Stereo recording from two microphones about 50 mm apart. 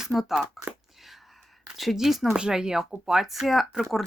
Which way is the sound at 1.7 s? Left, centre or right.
Centre.